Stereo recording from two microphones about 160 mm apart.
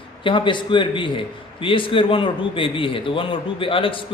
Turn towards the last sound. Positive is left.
turn(degrees=35)  # may be behind; listen again after turning